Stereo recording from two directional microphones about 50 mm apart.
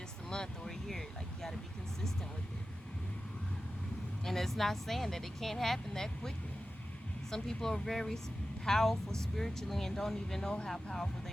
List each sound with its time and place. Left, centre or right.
0.3 s speech: centre
4.3 s speech: centre